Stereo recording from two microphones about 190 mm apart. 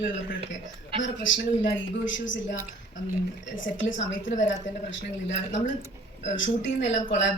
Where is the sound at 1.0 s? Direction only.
75° left (ahead or behind).